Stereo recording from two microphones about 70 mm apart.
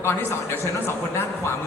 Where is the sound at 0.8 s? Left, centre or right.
Left.